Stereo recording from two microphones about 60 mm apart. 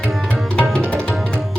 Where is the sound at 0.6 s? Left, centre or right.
Centre.